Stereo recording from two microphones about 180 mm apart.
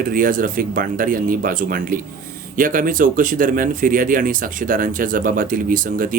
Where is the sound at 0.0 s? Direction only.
50° right (ahead or behind).